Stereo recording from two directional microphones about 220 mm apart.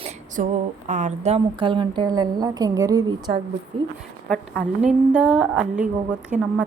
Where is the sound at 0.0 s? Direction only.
35° right (ahead or behind).